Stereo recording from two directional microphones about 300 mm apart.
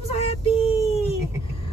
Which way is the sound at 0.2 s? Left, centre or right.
Centre.